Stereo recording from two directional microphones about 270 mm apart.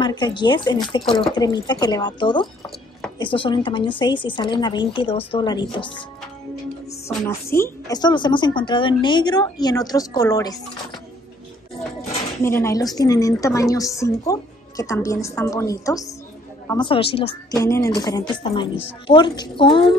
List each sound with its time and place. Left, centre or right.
0.0 s a woman's voice: centre
7.5 s a woman's voice: centre
12.4 s a woman's voice: centre